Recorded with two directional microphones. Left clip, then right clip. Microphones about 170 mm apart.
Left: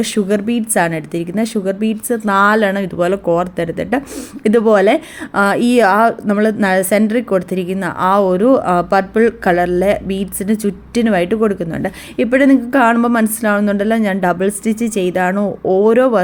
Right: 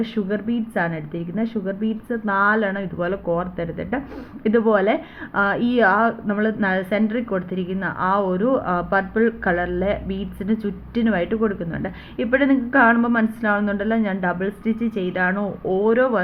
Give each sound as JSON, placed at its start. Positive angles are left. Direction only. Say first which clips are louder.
{"t": 0.0, "sound": "a woman's voice", "louder": "left 8 dB", "side_deg": 35}